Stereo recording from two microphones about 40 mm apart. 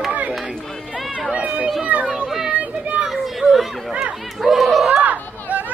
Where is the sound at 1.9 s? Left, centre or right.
Right.